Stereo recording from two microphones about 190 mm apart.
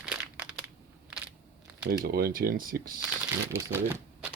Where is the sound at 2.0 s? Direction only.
50° right (ahead or behind).